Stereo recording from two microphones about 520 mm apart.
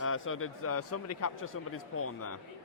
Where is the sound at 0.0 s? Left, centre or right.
Left.